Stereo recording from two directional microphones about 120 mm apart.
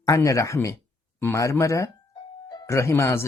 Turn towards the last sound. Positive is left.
turn(degrees=25)  # may be behind; listen again after turning